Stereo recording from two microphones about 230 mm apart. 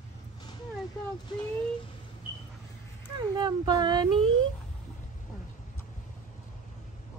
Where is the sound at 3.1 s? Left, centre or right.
Centre.